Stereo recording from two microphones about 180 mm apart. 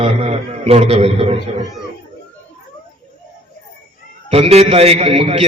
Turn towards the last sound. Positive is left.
turn(degrees=-35)  # may be behind; listen again after turning